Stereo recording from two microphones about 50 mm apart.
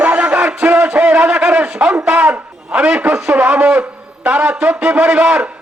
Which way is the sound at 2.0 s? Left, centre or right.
Right.